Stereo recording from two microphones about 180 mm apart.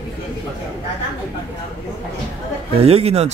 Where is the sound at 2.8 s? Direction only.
35° right (ahead or behind).